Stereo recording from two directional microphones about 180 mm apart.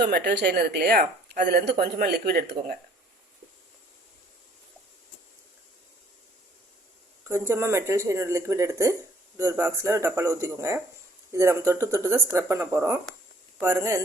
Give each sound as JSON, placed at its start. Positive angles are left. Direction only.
{"t": 0.0, "sound": "speech", "side_deg": -65}
{"t": 7.3, "sound": "speech", "side_deg": -15}